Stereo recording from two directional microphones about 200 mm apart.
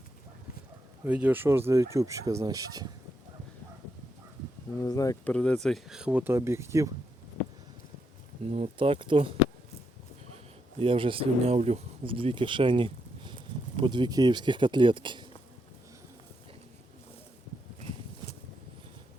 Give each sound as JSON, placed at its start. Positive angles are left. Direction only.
{"t": 1.0, "sound": "speech", "side_deg": -5}
{"t": 4.8, "sound": "speech", "side_deg": 15}
{"t": 8.4, "sound": "speech", "side_deg": -30}
{"t": 10.8, "sound": "speech", "side_deg": -25}